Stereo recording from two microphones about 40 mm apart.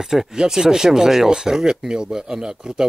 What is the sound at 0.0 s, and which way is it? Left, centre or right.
Speech, centre.